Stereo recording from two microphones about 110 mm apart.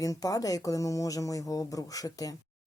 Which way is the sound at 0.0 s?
30° left (ahead or behind).